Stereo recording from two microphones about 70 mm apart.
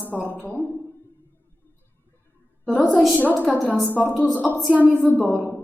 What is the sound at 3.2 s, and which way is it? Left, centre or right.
A woman's voice, left.